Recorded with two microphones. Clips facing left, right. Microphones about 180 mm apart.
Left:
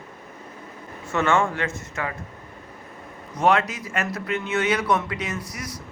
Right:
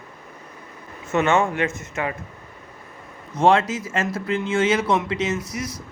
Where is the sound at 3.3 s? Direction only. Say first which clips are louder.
Right 3 dB; 25° right (ahead or behind).